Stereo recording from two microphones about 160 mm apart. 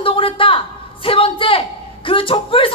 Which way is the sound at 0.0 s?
35° left (ahead or behind).